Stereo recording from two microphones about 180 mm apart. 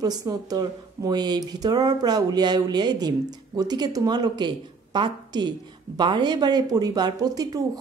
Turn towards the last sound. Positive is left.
turn(degrees=-20)  # may be behind; listen again after turning